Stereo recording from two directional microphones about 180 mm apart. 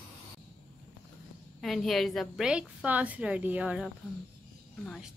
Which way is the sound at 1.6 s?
Centre (ahead or behind).